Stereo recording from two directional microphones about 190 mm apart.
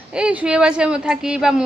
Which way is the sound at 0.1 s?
5° right (ahead or behind).